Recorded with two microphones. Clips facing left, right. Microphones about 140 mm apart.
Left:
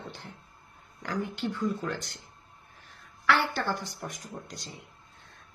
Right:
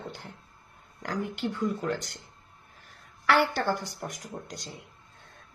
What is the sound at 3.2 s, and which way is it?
A woman's voice, 55° right (ahead or behind).